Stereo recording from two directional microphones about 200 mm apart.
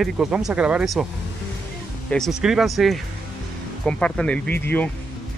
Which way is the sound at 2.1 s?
Centre (ahead or behind).